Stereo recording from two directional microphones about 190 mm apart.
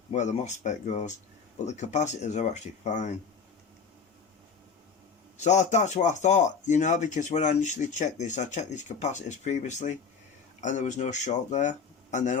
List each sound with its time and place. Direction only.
0.1 s speech: 35° left (ahead or behind)
5.4 s speech: 40° left (ahead or behind)